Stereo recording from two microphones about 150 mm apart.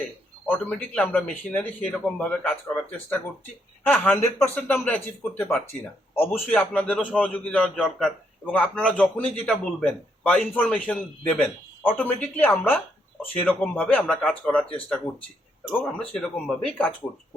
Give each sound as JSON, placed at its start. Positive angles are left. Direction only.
{"t": 0.4, "sound": "a man's voice", "side_deg": 10}